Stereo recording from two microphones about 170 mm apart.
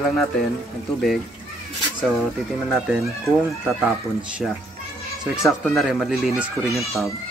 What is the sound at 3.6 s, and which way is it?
Speech, 5° right (ahead or behind).